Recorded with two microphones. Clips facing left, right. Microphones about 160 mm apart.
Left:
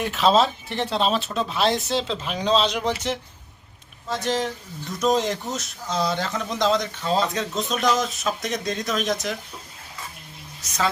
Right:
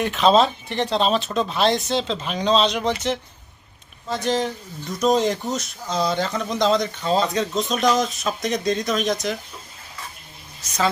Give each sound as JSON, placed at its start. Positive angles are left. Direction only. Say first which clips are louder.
{"t": 0.0, "sound": "speech", "louder": "right 2 dB", "side_deg": 5}